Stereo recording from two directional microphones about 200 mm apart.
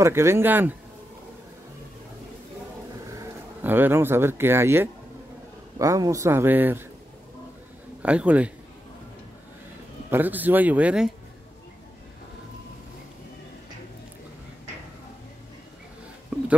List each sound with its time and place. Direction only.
0.0 s speech: 15° right (ahead or behind)
3.1 s speech: 10° right (ahead or behind)
8.0 s speech: 5° right (ahead or behind)
10.1 s speech: 10° right (ahead or behind)